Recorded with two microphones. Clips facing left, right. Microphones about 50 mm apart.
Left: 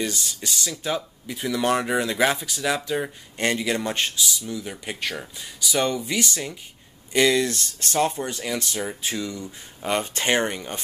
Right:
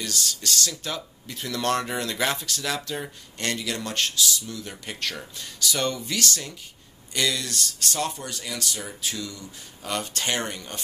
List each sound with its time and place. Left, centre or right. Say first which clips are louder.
0.0 s speech: left 2 dB; centre